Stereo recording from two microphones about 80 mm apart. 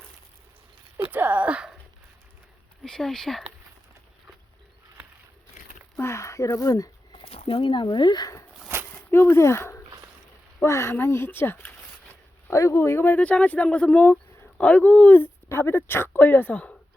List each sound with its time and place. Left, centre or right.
0.9 s a sound: right
2.8 s speech: centre
6.0 s speech: left
7.1 s speech: left
9.0 s speech: left